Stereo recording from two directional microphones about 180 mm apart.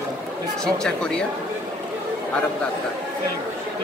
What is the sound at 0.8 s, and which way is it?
Speech, 5° left (ahead or behind).